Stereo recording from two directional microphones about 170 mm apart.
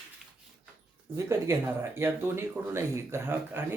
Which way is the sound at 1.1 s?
15° right (ahead or behind).